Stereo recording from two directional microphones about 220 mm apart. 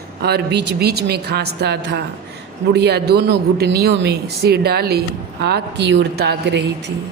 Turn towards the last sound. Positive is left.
turn(degrees=-50)  # may be behind; listen again after turning